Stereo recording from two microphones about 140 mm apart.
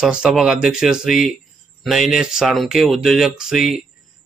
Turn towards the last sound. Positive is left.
turn(degrees=-5)  # may be behind; listen again after turning